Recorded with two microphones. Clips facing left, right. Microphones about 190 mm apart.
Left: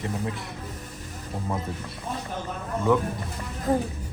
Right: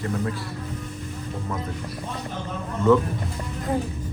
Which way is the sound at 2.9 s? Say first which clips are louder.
Right 5 dB; 15° left (ahead or behind).